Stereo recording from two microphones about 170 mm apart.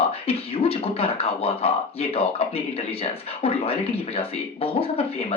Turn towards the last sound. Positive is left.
turn(degrees=35)  # may be behind; listen again after turning